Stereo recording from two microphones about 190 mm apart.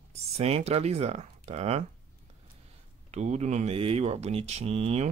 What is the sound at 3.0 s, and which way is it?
Speech, 35° right (ahead or behind).